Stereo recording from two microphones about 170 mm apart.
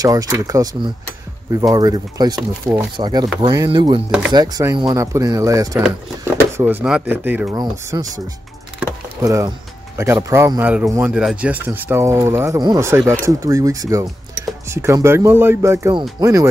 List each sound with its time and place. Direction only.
0.0 s speech: 20° right (ahead or behind)
7.9 s speech: 20° right (ahead or behind)
9.2 s speech: 20° right (ahead or behind)